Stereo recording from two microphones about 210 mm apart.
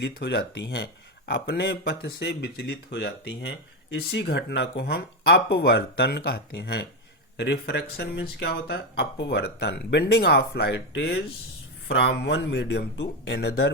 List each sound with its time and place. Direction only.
0.0 s speech: 50° left (ahead or behind)